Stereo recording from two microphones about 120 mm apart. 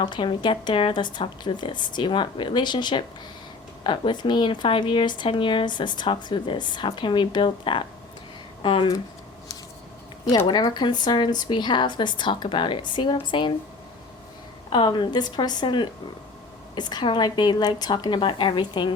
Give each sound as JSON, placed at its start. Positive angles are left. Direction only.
{"t": 0.0, "sound": "a woman's voice", "side_deg": 40}
{"t": 10.3, "sound": "a woman's voice", "side_deg": 50}
{"t": 10.7, "sound": "speech", "side_deg": 40}
{"t": 14.7, "sound": "speech", "side_deg": 40}